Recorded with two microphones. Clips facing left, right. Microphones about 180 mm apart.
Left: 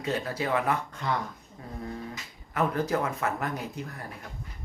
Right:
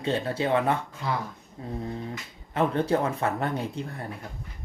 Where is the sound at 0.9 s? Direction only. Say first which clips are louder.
Even; 5° right (ahead or behind).